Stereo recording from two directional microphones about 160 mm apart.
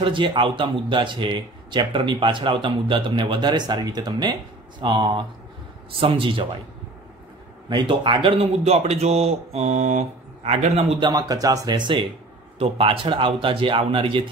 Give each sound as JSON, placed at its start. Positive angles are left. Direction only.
{"t": 0.0, "sound": "speech", "side_deg": -30}
{"t": 7.7, "sound": "speech", "side_deg": -30}
{"t": 11.1, "sound": "speech", "side_deg": -25}